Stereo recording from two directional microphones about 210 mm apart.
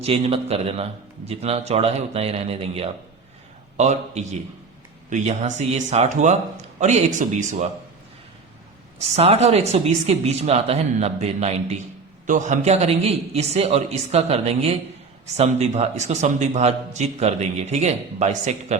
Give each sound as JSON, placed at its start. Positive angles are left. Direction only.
{"t": 0.0, "sound": "a man's voice", "side_deg": -30}
{"t": 9.0, "sound": "a man's voice", "side_deg": -30}